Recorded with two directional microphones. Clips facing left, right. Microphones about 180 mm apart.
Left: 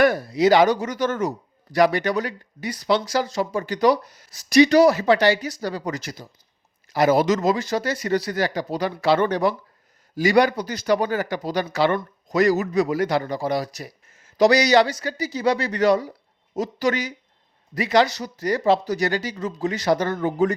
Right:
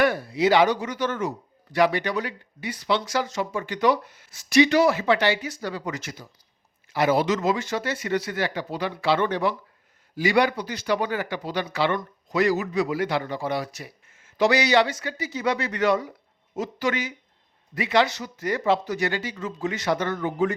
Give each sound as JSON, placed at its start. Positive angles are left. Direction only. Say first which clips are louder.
{"t": 0.0, "sound": "speech", "louder": "left 4 dB", "side_deg": 40}